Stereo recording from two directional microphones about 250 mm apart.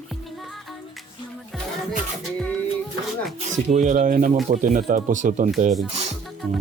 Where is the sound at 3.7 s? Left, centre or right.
Right.